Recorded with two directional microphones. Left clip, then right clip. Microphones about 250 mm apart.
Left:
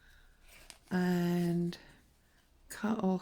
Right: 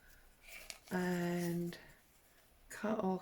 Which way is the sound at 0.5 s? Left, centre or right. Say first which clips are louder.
Right 4 dB; centre.